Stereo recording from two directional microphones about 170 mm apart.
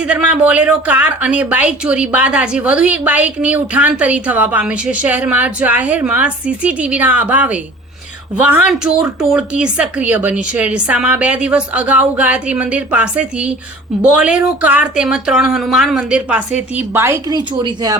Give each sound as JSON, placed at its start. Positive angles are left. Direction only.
{"t": 0.0, "sound": "a woman's voice", "side_deg": -10}